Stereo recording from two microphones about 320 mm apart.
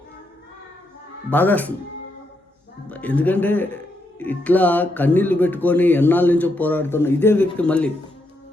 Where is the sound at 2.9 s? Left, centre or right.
Centre.